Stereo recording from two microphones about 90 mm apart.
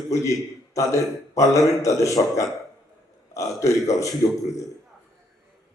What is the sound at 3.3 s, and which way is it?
Speech, 35° left (ahead or behind).